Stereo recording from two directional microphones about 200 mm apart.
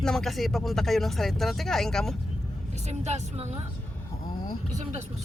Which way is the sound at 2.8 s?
35° right (ahead or behind).